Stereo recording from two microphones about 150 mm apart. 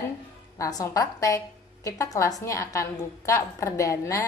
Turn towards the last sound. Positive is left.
turn(degrees=20)  # may be behind; listen again after turning